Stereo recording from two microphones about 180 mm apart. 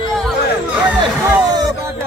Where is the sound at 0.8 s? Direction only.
10° right (ahead or behind).